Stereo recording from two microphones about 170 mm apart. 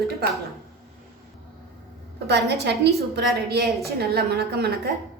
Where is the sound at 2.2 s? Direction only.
80° right.